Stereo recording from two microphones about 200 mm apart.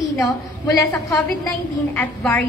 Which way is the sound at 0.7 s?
15° left (ahead or behind).